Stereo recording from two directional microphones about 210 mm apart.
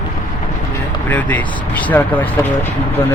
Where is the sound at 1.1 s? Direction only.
10° left (ahead or behind).